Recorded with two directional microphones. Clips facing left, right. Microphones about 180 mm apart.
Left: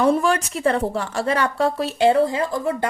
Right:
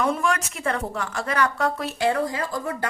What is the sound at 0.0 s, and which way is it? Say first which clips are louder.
A woman's voice: left 6 dB; 30° left (ahead or behind).